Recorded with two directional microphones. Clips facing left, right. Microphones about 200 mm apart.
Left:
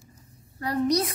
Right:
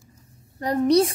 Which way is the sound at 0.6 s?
30° right (ahead or behind).